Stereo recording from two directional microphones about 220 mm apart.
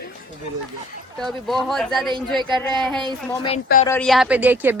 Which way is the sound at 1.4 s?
Centre (ahead or behind).